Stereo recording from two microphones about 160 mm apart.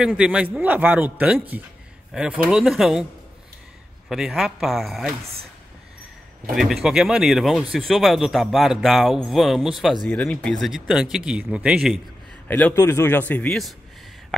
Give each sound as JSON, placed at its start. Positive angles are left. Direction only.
{"t": 0.0, "sound": "a man's voice", "side_deg": -5}
{"t": 4.1, "sound": "a man's voice", "side_deg": -5}
{"t": 6.5, "sound": "a man's voice", "side_deg": 0}
{"t": 12.4, "sound": "a man's voice", "side_deg": 10}